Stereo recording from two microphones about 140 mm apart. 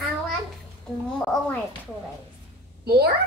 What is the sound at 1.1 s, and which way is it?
Speech, 10° left (ahead or behind).